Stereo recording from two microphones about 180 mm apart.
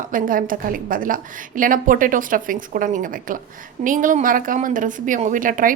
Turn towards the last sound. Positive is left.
turn(degrees=-50)  # may be behind; listen again after turning